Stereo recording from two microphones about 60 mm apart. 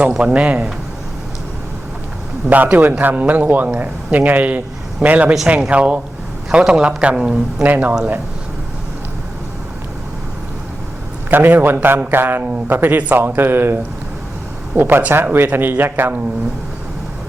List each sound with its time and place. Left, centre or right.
0.2 s speech: right
2.5 s speech: right
7.6 s speech: right
11.3 s speech: right
14.8 s speech: right